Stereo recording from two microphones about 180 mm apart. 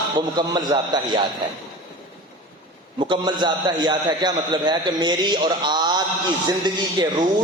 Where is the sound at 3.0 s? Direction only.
25° right (ahead or behind).